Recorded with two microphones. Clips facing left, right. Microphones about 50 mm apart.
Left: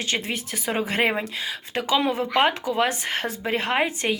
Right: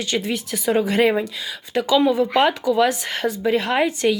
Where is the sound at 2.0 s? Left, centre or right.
Left.